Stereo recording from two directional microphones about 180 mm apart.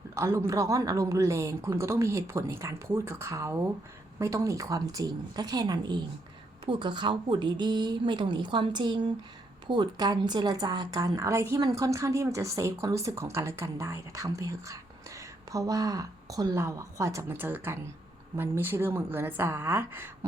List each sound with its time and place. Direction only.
0.1 s a woman's voice: 15° right (ahead or behind)